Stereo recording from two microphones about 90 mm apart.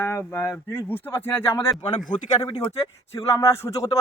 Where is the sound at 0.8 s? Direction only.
20° left (ahead or behind).